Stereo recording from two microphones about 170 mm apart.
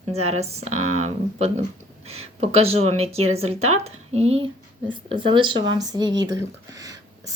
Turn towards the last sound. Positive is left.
turn(degrees=-20)  # may be behind; listen again after turning